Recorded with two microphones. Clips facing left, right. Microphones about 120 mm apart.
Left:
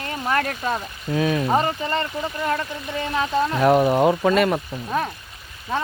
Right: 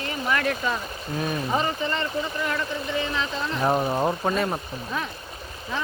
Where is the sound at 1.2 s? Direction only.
90° left.